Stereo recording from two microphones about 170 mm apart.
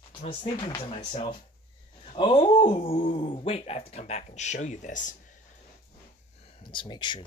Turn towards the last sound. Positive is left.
turn(degrees=30)  # may be behind; listen again after turning